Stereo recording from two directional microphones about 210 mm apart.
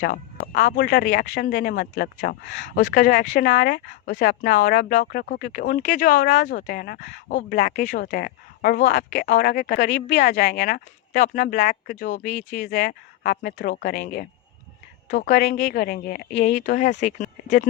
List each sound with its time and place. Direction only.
0.0 s speech: 40° left (ahead or behind)
3.5 s speech: 55° left (ahead or behind)
4.3 s speech: 35° left (ahead or behind); by 14.3 s 50° left (ahead or behind)
15.1 s speech: 40° left (ahead or behind)
16.6 s speech: 35° left (ahead or behind)